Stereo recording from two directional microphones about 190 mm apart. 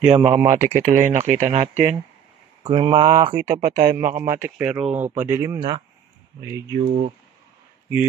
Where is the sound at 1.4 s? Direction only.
35° right (ahead or behind).